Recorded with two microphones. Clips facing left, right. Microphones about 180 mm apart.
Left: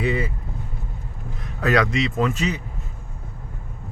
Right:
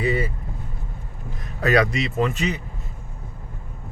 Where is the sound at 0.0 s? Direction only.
Centre (ahead or behind).